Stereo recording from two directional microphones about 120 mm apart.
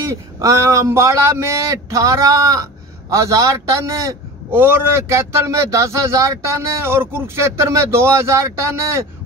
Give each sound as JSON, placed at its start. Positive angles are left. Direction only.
{"t": 0.0, "sound": "speech", "side_deg": -25}